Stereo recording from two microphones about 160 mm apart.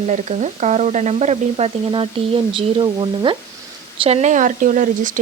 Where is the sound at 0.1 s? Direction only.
45° right (ahead or behind); by 3.3 s 30° right (ahead or behind).